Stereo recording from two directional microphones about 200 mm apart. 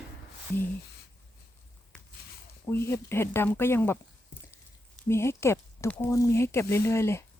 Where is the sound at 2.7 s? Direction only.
10° left (ahead or behind).